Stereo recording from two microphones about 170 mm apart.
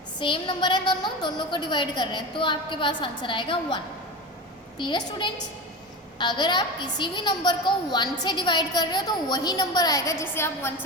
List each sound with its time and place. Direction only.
0.2 s a woman's voice: 25° left (ahead or behind)
4.8 s a woman's voice: 30° left (ahead or behind)